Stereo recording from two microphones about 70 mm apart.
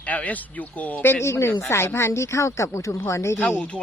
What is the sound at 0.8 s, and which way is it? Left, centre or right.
Speech, left.